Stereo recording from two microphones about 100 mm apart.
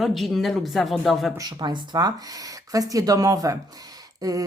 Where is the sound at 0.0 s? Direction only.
Centre (ahead or behind).